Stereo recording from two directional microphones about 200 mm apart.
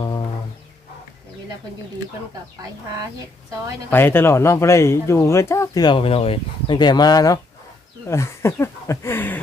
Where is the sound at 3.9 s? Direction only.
10° left (ahead or behind).